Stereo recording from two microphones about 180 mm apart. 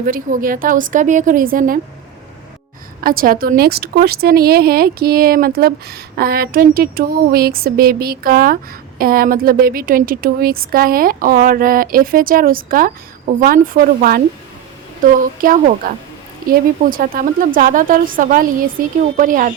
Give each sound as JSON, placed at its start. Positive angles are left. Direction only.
{"t": 0.0, "sound": "a woman's voice", "side_deg": -50}
{"t": 3.0, "sound": "a woman's voice", "side_deg": -55}